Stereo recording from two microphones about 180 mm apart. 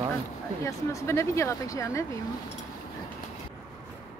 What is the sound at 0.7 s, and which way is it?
Speech, 15° left (ahead or behind).